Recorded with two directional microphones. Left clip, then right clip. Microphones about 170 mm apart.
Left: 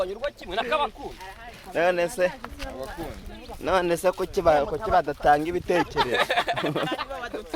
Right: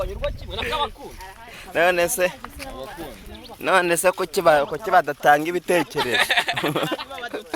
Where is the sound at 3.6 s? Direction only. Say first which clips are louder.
Right 4 dB; 20° right (ahead or behind).